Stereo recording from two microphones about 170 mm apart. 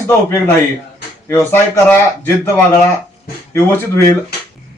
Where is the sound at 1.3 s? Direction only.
15° left (ahead or behind).